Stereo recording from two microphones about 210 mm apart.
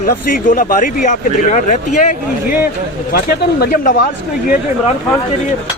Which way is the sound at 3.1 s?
50° left (ahead or behind).